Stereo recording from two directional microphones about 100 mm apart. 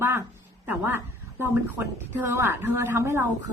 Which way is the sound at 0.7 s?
20° right (ahead or behind).